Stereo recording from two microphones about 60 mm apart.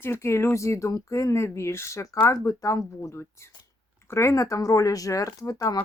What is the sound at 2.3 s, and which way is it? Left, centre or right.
Speech, left.